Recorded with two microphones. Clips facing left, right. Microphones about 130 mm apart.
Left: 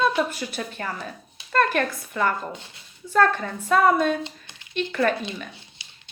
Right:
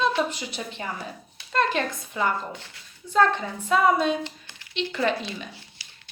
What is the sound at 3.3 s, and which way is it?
Speech, 15° right (ahead or behind).